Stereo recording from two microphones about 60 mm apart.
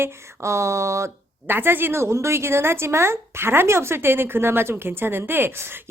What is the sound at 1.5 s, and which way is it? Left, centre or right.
A woman's voice, right.